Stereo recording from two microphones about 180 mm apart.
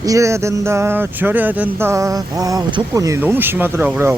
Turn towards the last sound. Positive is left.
turn(degrees=-10)  # may be behind; listen again after turning